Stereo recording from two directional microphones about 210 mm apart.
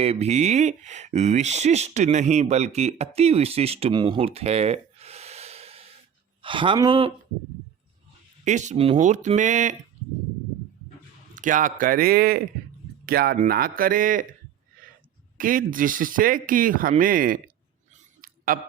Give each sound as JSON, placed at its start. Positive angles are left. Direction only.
{"t": 0.0, "sound": "speech", "side_deg": -30}
{"t": 8.4, "sound": "speech", "side_deg": -35}
{"t": 11.3, "sound": "speech", "side_deg": -40}
{"t": 15.4, "sound": "speech", "side_deg": -40}
{"t": 17.9, "sound": "a sound", "side_deg": -40}